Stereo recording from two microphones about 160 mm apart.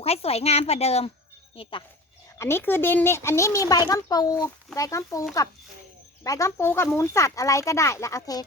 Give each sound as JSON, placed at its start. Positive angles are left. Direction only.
{"t": 0.0, "sound": "speech", "side_deg": 40}
{"t": 2.4, "sound": "a child's voice", "side_deg": 15}
{"t": 6.2, "sound": "a child's voice", "side_deg": 20}